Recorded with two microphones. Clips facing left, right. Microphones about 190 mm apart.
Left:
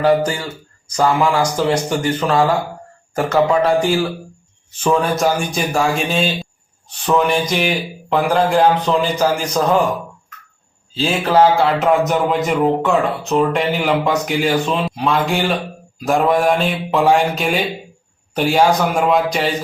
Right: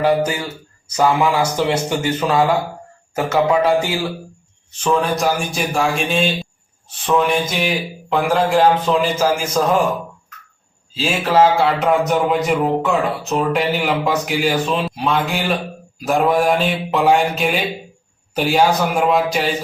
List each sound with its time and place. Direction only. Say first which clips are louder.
0.0 s speech: left 2 dB; 10° right (ahead or behind)
0.3 s a man's voice: right 1 dB; 20° right (ahead or behind)
1.7 s speech: left 1 dB; 10° right (ahead or behind)
4.8 s speech: left 2 dB; 5° left (ahead or behind)
10.9 s speech: left 1 dB; centre (ahead or behind)